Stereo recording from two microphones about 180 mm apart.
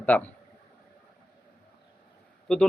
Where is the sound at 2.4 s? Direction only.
5° left (ahead or behind).